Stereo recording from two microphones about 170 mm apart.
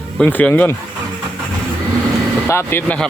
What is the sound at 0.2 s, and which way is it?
Speech, 10° left (ahead or behind).